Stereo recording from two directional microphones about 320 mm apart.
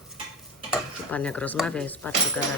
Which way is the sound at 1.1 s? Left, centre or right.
Centre.